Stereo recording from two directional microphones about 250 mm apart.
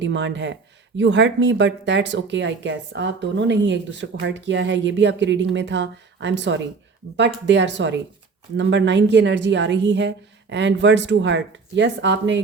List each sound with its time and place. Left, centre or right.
0.0 s speech: right